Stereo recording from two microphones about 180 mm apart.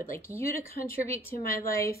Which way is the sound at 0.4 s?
15° left (ahead or behind).